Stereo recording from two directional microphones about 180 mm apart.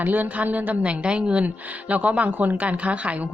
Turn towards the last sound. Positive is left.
turn(degrees=-5)  # may be behind; listen again after turning